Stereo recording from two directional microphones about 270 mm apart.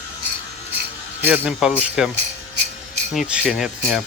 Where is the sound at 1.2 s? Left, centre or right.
Centre.